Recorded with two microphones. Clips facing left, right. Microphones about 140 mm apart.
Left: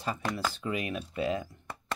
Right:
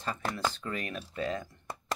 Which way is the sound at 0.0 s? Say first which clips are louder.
Left 1 dB; 10° left (ahead or behind).